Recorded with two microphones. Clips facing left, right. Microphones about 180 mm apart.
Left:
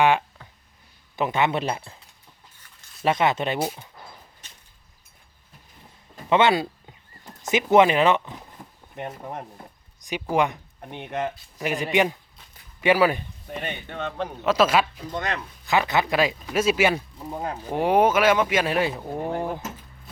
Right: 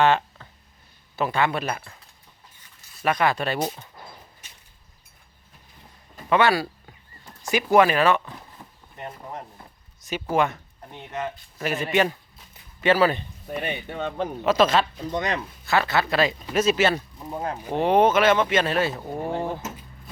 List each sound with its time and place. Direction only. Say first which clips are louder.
0.0 s a sound: even; 10° left (ahead or behind)
1.1 s speech: left 1 dB; 20° left (ahead or behind)
3.0 s speech: left 1 dB; 25° left (ahead or behind)
3.6 s speech: even; 10° left (ahead or behind)
6.2 s speech: left 1 dB; 20° left (ahead or behind)
10.0 s speech: even; 15° left (ahead or behind)
13.6 s speech: right 2 dB; 10° right (ahead or behind); by 14.8 s 5° left (ahead or behind)
15.1 s speech: right 2 dB; 20° right (ahead or behind)
15.6 s speech: left 1 dB; 15° left (ahead or behind)
17.2 s speech: right 1 dB; centre (ahead or behind)
17.7 s speech: right 1 dB; 10° left (ahead or behind)
18.9 s speech: left 1 dB; 5° left (ahead or behind)